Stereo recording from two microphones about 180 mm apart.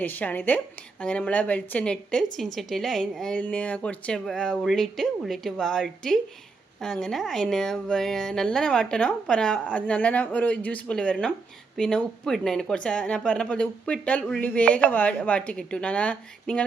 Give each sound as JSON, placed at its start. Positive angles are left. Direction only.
{"t": 0.0, "sound": "a woman's voice", "side_deg": 10}